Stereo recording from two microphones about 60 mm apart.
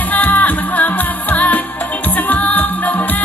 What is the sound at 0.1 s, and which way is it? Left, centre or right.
Music, left.